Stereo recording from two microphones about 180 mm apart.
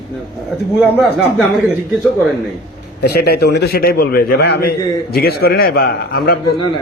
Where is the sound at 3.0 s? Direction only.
65° left (ahead or behind).